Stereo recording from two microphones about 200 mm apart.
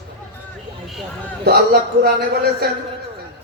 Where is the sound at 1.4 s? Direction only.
50° right (ahead or behind).